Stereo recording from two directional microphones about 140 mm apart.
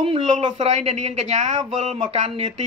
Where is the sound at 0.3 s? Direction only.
55° right (ahead or behind).